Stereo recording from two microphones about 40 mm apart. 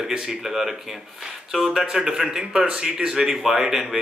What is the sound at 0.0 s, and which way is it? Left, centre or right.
Speech, centre.